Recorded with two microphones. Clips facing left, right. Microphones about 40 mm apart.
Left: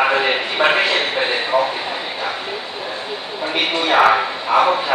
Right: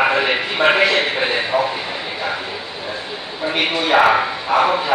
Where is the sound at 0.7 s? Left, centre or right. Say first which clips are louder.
Right 4 dB; right.